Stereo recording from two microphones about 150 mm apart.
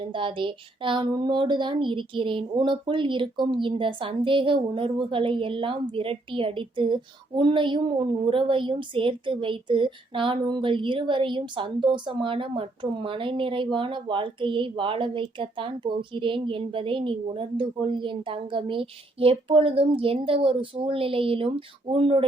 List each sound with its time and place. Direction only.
0.0 s a woman's voice: 35° right (ahead or behind)